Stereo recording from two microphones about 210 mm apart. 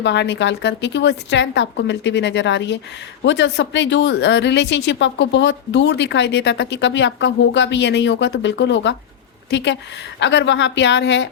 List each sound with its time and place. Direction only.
0.0 s a woman's voice: 55° left (ahead or behind)